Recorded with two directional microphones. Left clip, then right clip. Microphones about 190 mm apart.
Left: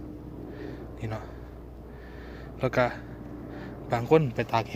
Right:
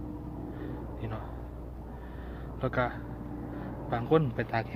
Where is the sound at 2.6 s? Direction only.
45° left (ahead or behind).